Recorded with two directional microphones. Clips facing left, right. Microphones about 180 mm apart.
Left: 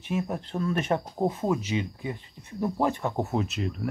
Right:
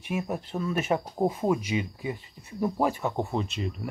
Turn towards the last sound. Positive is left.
turn(degrees=0)  # may be behind; listen again after turning